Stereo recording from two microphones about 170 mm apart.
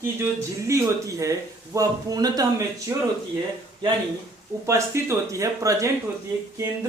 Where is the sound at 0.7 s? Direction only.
20° right (ahead or behind).